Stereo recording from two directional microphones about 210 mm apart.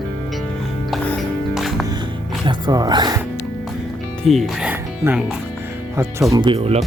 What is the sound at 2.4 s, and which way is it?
Speech, 20° right (ahead or behind).